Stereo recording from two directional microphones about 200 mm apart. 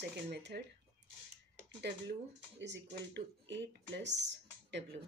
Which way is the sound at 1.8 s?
55° right (ahead or behind).